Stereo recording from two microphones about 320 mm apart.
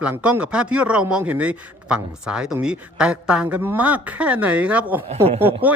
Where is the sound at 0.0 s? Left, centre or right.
Centre.